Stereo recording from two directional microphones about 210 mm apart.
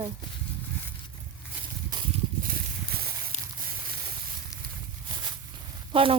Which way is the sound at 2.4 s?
45° right (ahead or behind).